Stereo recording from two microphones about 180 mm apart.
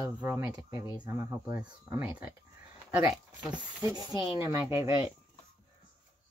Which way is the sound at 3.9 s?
25° left (ahead or behind).